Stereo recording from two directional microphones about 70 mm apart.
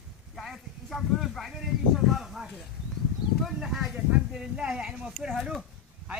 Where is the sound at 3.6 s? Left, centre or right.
Centre.